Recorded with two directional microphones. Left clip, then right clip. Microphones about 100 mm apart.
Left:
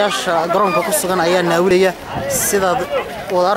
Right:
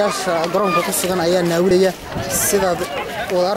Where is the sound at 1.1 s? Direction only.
35° left (ahead or behind).